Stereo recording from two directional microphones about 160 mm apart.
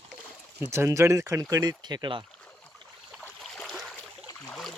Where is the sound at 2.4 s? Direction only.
10° left (ahead or behind).